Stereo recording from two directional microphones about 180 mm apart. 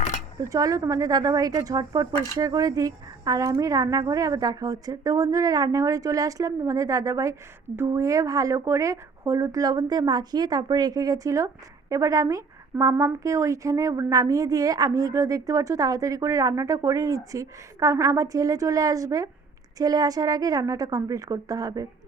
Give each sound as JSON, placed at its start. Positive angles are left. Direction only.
{"t": 0.3, "sound": "a woman's voice", "side_deg": -20}